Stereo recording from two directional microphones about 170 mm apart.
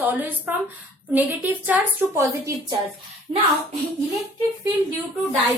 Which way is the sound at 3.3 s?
25° right (ahead or behind).